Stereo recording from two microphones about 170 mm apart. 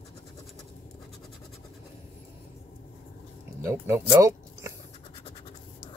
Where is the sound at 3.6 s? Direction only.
15° right (ahead or behind).